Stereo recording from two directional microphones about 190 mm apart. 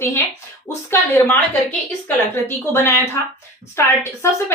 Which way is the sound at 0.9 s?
15° left (ahead or behind).